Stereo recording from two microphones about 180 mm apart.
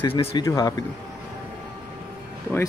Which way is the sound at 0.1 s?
30° left (ahead or behind).